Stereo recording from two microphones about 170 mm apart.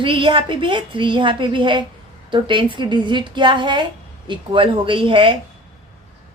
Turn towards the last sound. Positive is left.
turn(degrees=-30)  # may be behind; listen again after turning